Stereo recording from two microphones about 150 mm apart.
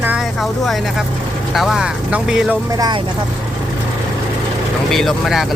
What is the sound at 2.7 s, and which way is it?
Speech, 25° right (ahead or behind).